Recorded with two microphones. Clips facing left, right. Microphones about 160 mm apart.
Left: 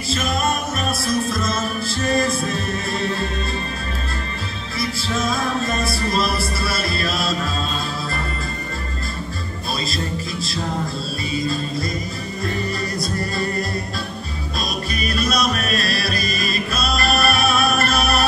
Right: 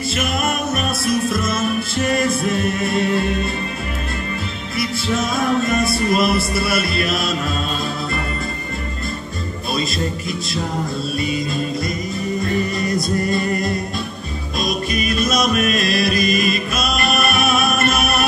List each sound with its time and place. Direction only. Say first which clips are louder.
1.0 s music: right 3 dB; 30° left (ahead or behind)
5.7 s music: right 5 dB; 30° left (ahead or behind)
14.9 s music: right 1 dB; 35° left (ahead or behind)